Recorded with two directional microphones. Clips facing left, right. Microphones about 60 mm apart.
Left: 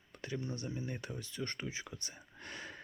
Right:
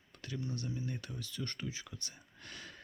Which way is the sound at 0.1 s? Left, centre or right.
Left.